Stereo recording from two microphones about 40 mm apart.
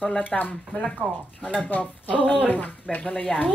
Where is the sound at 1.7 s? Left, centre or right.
Left.